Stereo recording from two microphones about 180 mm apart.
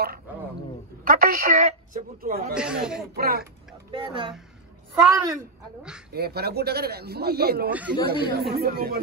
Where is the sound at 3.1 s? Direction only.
60° right (ahead or behind).